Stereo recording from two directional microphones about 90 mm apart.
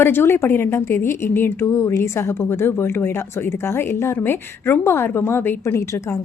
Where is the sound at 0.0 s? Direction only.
25° left (ahead or behind).